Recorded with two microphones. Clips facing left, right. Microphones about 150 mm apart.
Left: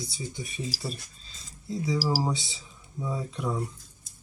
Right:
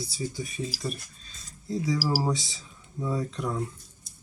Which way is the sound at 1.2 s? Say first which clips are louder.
Right 1 dB; 25° left (ahead or behind).